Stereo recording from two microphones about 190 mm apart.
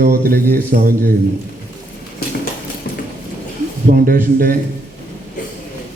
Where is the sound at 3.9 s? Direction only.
50° right (ahead or behind).